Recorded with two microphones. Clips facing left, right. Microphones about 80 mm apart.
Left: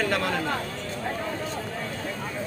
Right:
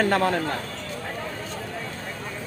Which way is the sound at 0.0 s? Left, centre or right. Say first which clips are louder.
Right 5 dB; right.